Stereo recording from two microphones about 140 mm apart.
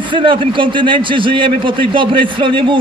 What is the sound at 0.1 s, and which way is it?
A man's voice, 35° right (ahead or behind).